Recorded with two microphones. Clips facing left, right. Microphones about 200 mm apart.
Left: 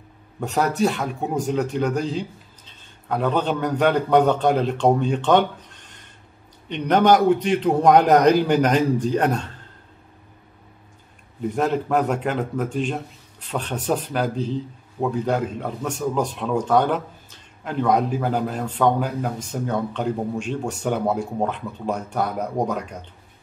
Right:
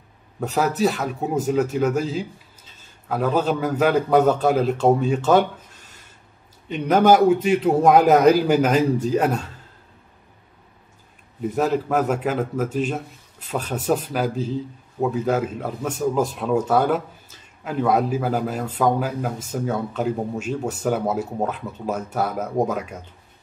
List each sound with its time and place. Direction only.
0.4 s a man's voice: 5° right (ahead or behind)
11.4 s a man's voice: centre (ahead or behind)